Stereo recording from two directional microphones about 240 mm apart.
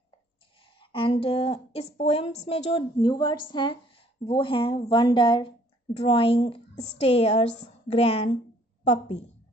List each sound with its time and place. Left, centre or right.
0.7 s a woman's voice: left